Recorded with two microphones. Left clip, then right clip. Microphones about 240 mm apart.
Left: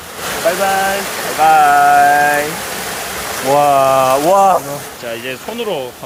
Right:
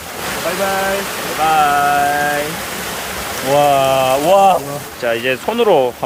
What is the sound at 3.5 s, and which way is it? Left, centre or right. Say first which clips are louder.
Rain: left 2 dB; centre.